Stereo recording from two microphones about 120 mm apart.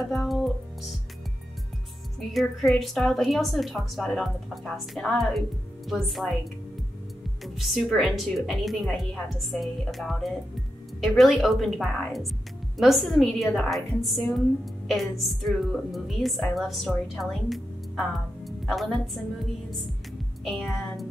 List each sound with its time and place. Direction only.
0.1 s music: centre (ahead or behind)
2.1 s a woman's voice: centre (ahead or behind)
7.4 s a woman's voice: centre (ahead or behind)
20.4 s a woman's voice: centre (ahead or behind)